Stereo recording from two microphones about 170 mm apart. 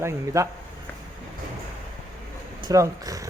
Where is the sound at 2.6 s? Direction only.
20° right (ahead or behind).